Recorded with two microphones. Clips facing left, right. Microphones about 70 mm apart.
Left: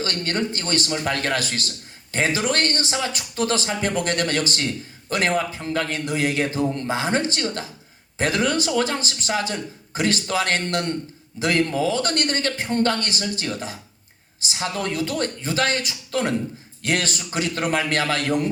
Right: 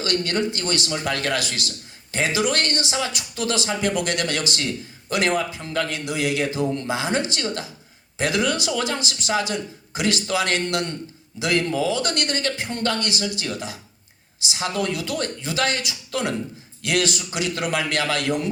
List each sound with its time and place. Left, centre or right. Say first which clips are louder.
0.0 s a man's voice: right 2 dB; left